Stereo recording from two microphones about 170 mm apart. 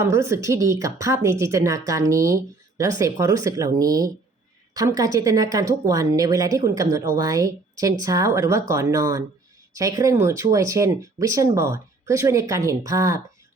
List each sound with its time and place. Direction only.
0.0 s a woman's voice: 15° right (ahead or behind)